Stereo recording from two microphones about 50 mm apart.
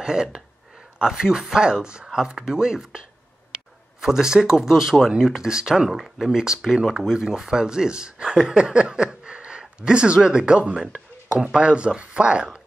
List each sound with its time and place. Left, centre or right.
0.0 s speech: centre
4.0 s speech: centre